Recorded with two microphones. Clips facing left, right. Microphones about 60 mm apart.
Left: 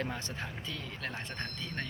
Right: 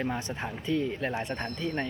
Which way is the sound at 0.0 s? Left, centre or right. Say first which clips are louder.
Right 6 dB; centre.